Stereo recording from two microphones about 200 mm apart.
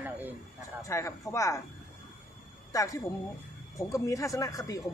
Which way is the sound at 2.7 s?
15° left (ahead or behind).